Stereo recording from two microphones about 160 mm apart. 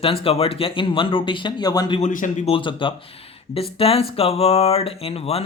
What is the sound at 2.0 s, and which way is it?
Speech, 55° left (ahead or behind).